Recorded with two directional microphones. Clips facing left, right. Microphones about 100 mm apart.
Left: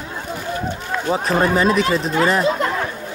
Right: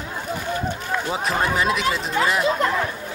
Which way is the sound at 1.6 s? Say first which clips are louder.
Left 5 dB; 40° left (ahead or behind).